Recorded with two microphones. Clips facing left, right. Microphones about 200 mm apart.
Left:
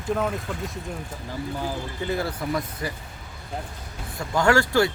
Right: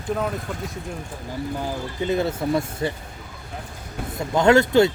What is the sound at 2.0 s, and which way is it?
Speech, 20° right (ahead or behind).